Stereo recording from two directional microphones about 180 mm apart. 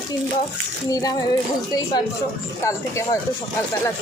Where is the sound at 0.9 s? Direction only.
20° left (ahead or behind).